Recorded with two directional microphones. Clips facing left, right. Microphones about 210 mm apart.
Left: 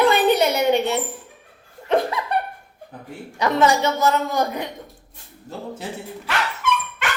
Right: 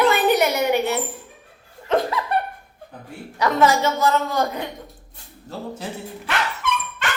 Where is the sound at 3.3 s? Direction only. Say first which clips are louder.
Even; 20° left (ahead or behind).